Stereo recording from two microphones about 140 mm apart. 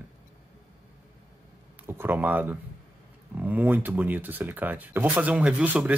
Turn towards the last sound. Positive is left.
turn(degrees=-10)  # may be behind; listen again after turning